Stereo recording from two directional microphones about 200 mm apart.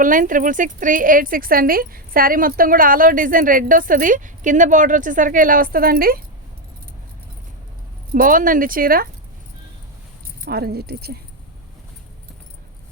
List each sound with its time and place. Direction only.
0.0 s speech: 45° right (ahead or behind)
8.1 s speech: 45° right (ahead or behind)
10.4 s speech: 50° right (ahead or behind)